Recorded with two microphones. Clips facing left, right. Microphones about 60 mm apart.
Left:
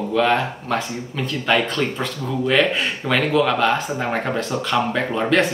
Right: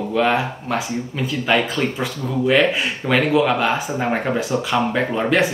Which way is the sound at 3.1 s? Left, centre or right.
Centre.